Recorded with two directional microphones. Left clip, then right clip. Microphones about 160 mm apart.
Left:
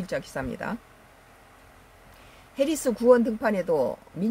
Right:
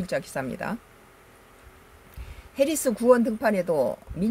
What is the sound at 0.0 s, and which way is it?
Speech, centre (ahead or behind).